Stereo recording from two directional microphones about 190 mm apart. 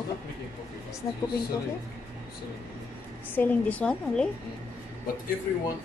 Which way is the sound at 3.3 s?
10° left (ahead or behind).